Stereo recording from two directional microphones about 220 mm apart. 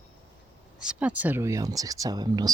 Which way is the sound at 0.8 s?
5° right (ahead or behind).